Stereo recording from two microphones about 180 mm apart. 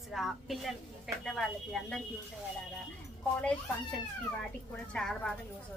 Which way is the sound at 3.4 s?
5° left (ahead or behind).